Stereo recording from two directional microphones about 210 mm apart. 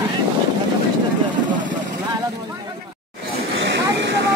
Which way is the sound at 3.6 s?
60° right (ahead or behind).